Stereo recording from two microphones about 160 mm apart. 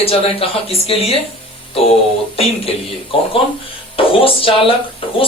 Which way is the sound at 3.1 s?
35° left (ahead or behind).